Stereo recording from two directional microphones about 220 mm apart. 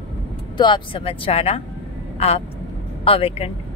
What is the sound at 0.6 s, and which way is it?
A woman's voice, 20° left (ahead or behind).